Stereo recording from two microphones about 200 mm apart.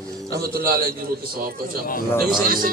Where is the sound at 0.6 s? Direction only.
50° right (ahead or behind).